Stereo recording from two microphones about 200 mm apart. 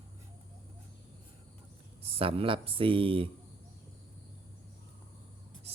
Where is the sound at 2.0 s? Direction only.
30° right (ahead or behind).